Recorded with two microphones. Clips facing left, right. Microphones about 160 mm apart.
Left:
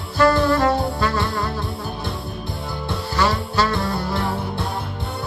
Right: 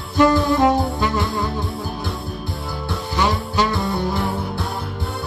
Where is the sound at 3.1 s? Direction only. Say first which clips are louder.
Even; 15° right (ahead or behind).